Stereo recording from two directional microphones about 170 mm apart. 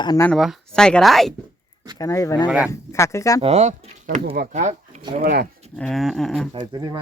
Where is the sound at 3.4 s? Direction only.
40° right (ahead or behind).